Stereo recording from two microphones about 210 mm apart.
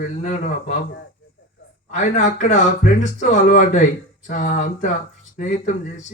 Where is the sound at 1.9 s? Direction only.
35° left (ahead or behind).